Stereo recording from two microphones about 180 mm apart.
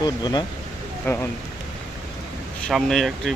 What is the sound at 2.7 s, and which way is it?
Speech, centre (ahead or behind).